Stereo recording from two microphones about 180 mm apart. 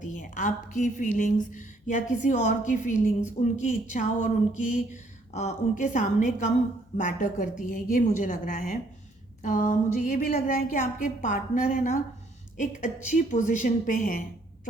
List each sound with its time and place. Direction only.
0.0 s a woman's voice: 45° left (ahead or behind)